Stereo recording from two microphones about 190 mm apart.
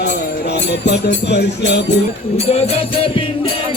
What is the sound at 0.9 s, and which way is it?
Speech, 60° left (ahead or behind).